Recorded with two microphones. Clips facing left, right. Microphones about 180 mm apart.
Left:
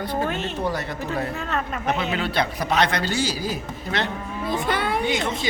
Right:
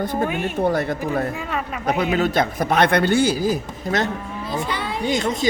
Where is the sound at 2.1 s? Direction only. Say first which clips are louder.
Right 5 dB; 45° right (ahead or behind).